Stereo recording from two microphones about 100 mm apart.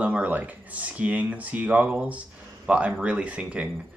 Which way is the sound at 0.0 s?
15° right (ahead or behind).